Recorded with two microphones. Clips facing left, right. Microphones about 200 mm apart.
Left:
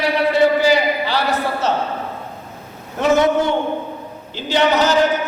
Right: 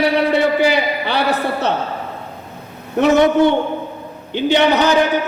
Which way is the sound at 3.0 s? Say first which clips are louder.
Right 4 dB; 60° right (ahead or behind).